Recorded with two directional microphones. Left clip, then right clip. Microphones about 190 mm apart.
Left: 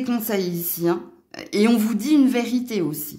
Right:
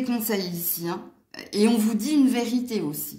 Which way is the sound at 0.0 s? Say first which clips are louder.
Left 3 dB; 45° left (ahead or behind).